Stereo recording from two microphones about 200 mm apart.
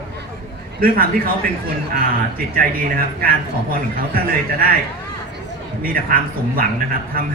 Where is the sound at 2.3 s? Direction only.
45° right (ahead or behind).